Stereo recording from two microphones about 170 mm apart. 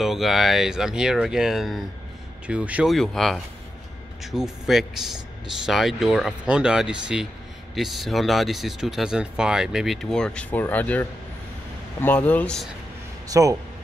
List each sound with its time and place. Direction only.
0.0 s speech: centre (ahead or behind)
13.3 s speech: 20° right (ahead or behind)